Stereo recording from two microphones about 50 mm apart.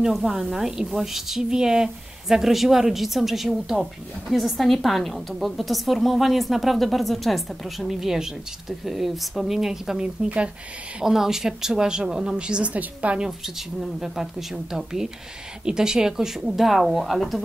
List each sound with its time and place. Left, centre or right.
0.1 s a woman's voice: centre; by 13.2 s right
13.7 s a woman's voice: centre